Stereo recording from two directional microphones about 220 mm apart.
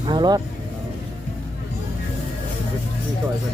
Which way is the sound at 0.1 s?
20° right (ahead or behind).